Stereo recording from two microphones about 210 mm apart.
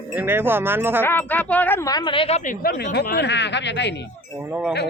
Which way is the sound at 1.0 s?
10° left (ahead or behind).